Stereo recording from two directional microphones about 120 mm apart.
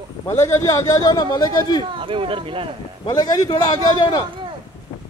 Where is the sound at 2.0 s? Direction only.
45° right (ahead or behind).